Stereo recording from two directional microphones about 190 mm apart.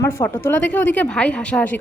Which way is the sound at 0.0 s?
10° left (ahead or behind).